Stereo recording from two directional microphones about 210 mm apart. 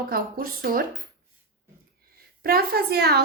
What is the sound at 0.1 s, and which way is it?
Speech, 45° right (ahead or behind).